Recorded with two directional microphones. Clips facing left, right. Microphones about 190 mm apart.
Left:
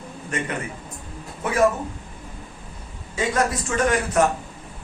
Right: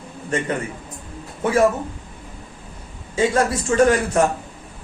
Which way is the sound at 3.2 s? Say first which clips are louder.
Right 4 dB; 30° right (ahead or behind).